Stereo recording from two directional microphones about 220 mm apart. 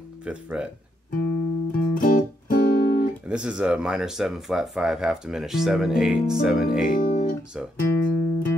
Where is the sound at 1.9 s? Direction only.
40° left (ahead or behind).